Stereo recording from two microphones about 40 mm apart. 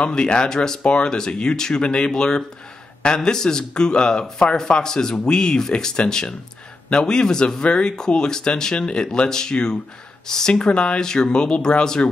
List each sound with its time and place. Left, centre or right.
0.0 s speech: left